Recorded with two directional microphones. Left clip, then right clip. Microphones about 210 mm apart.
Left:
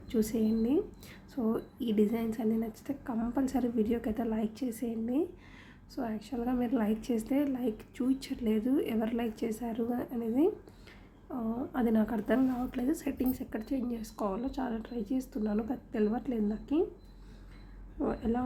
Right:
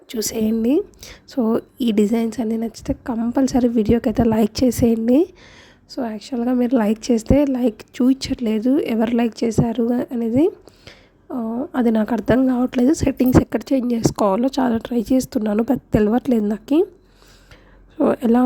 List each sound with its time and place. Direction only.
0.1 s a woman's voice: 50° right (ahead or behind)
18.0 s a woman's voice: 55° right (ahead or behind)